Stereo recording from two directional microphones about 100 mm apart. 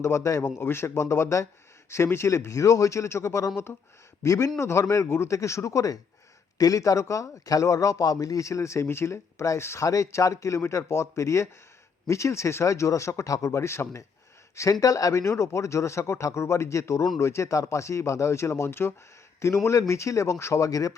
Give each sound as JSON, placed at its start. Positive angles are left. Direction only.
{"t": 0.0, "sound": "speech", "side_deg": 30}